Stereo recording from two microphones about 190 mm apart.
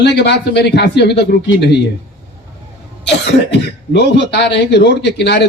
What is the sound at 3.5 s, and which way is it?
Speech, 65° left (ahead or behind).